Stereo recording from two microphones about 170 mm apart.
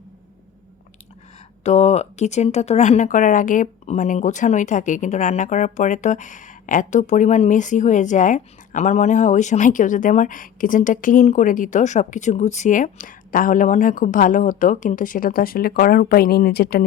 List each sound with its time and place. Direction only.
1.6 s speech: 40° left (ahead or behind); by 16.8 s 70° left (ahead or behind)